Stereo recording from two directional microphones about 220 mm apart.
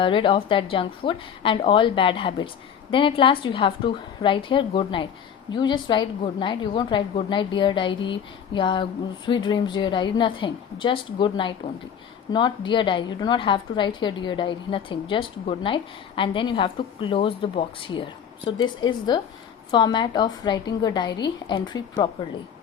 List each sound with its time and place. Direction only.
0.0 s a woman's voice: 25° left (ahead or behind)